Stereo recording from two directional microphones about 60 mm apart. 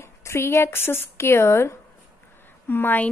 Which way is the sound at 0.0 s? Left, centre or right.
Left.